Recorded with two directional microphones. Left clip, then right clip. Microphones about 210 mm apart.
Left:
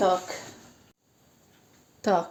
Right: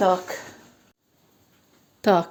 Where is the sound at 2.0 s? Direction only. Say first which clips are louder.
Right 5 dB; 40° right (ahead or behind).